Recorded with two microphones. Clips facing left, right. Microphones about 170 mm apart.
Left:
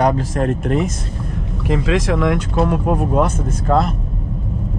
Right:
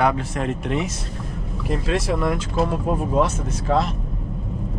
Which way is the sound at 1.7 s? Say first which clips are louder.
Left 5 dB; 90° left.